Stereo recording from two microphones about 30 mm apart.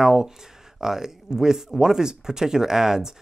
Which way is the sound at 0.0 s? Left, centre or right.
Right.